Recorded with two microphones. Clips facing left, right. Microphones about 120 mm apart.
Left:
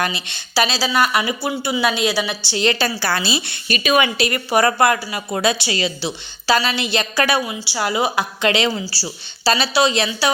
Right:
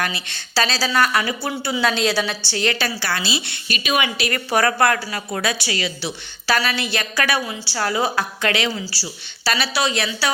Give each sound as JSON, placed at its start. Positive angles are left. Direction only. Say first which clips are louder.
{"t": 0.0, "sound": "speech", "louder": "left 3 dB", "side_deg": 20}
{"t": 2.6, "sound": "a woman's voice", "louder": "left 4 dB", "side_deg": 25}
{"t": 4.3, "sound": "a woman's voice", "louder": "left 2 dB", "side_deg": 15}